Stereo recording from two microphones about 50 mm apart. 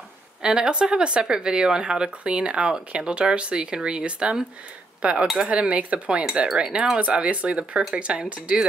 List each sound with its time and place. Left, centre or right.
0.4 s speech: centre
5.2 s speech: centre
5.5 s speech: right